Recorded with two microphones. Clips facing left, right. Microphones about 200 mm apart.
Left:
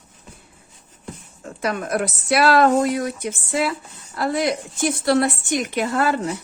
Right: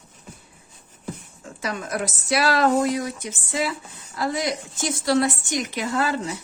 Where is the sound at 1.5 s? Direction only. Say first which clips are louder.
Left 5 dB; 60° left (ahead or behind).